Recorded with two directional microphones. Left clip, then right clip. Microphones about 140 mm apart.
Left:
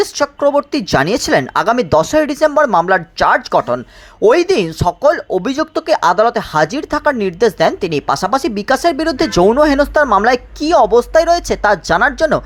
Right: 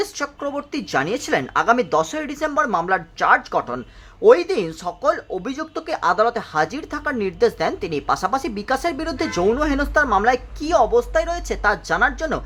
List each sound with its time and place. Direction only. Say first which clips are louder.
0.0 s speech: left 11 dB; 35° left (ahead or behind)